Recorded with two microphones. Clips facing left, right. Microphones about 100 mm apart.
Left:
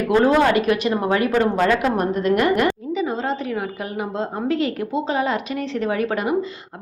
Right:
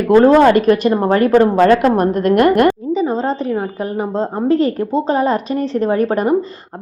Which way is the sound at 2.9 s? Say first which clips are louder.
Right 6 dB; 35° right (ahead or behind).